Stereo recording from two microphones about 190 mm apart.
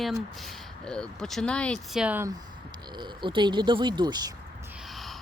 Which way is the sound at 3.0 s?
25° right (ahead or behind).